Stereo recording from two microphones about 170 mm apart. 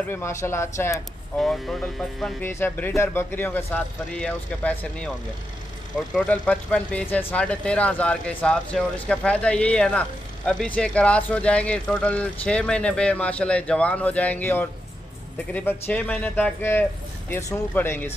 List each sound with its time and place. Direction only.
0.1 s speech: 15° left (ahead or behind)
0.9 s speech: centre (ahead or behind)
2.4 s speech: 15° left (ahead or behind)
6.1 s speech: 5° left (ahead or behind)